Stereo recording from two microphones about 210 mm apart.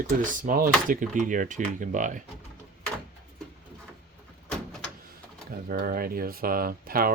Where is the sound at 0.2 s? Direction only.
40° right (ahead or behind).